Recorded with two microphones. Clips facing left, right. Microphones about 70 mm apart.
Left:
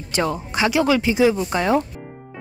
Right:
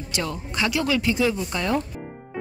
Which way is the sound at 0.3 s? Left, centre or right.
Left.